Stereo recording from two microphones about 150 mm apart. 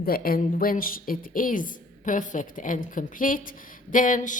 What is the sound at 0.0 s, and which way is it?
Speech, 75° left (ahead or behind).